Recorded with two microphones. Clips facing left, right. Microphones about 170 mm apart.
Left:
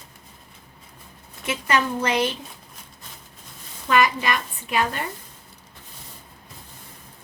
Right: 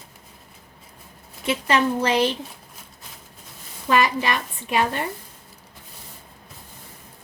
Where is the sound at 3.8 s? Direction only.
30° right (ahead or behind).